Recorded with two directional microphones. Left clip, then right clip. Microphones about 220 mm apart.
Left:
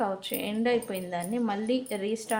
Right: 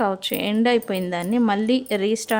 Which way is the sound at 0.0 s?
45° right (ahead or behind).